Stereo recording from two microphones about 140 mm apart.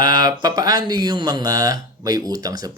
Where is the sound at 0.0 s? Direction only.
90° left.